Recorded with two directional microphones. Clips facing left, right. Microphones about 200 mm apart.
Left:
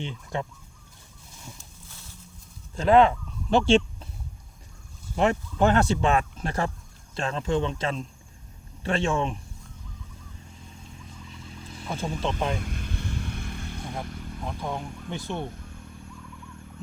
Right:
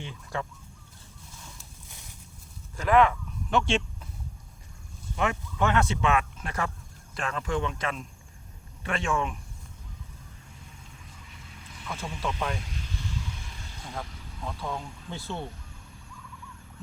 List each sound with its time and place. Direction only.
0.0 s speech: 20° left (ahead or behind)
1.9 s a sound: 15° right (ahead or behind)
2.7 s speech: 30° left (ahead or behind)
5.1 s speech: 35° left (ahead or behind)
11.3 s vehicle: 30° left (ahead or behind)
12.5 s vehicle: 55° left (ahead or behind)
14.4 s speech: 20° left (ahead or behind)